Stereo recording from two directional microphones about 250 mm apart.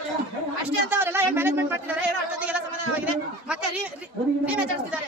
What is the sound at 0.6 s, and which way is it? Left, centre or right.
Speech, centre.